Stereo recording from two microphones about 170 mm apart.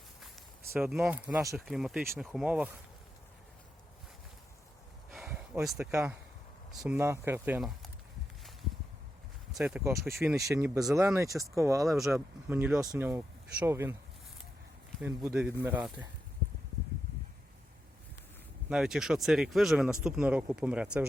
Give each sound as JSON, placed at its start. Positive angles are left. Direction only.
{"t": 0.2, "sound": "a sound", "side_deg": 0}
{"t": 1.5, "sound": "speech", "side_deg": 0}
{"t": 5.1, "sound": "a sound", "side_deg": -5}
{"t": 6.8, "sound": "speech", "side_deg": -10}
{"t": 9.6, "sound": "speech", "side_deg": -5}
{"t": 10.2, "sound": "speech", "side_deg": -15}
{"t": 15.0, "sound": "speech", "side_deg": -5}
{"t": 18.7, "sound": "speech", "side_deg": -5}